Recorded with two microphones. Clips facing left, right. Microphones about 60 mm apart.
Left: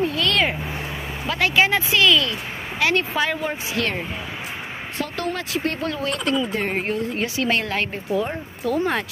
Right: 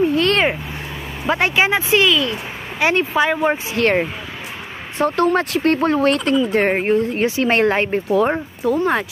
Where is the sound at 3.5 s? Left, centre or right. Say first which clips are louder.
Right 7 dB; right.